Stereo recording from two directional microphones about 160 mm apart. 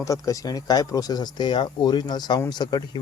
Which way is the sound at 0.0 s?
20° left (ahead or behind).